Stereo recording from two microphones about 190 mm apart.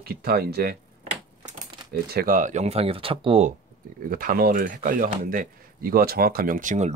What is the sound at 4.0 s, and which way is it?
Speech, 45° right (ahead or behind).